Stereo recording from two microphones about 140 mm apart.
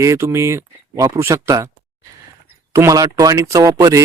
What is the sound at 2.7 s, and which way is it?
Speech, 25° right (ahead or behind).